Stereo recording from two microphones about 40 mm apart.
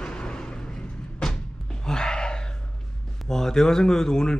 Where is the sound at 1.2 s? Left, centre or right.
Centre.